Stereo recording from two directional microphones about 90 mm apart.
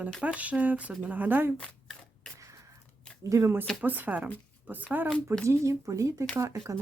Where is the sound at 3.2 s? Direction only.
30° right (ahead or behind).